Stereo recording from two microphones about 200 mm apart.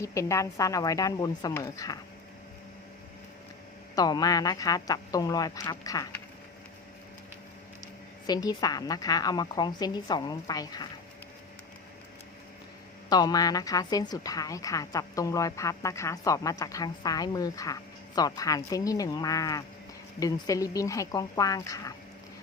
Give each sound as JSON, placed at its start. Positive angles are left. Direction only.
{"t": 0.0, "sound": "a woman's voice", "side_deg": 15}
{"t": 3.9, "sound": "a woman's voice", "side_deg": 20}
{"t": 8.3, "sound": "a woman's voice", "side_deg": 20}
{"t": 13.1, "sound": "a woman's voice", "side_deg": 20}